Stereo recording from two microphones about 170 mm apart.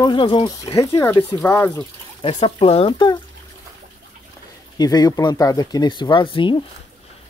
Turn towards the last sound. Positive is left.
turn(degrees=30)  # may be behind; listen again after turning